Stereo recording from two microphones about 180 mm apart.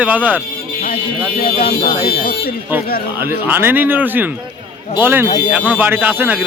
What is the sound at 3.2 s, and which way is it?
Speech, 10° right (ahead or behind).